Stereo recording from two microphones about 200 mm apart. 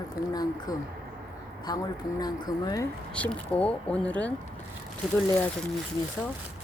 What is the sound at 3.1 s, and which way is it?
Speech, 5° left (ahead or behind).